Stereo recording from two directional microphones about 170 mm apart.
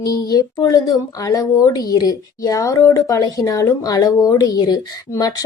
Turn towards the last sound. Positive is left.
turn(degrees=25)  # may be behind; listen again after turning